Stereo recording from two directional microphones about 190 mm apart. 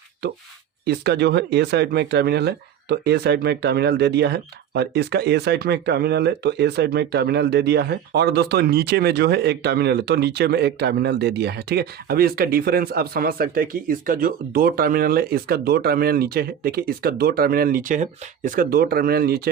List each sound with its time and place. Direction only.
0.9 s speech: 60° right (ahead or behind)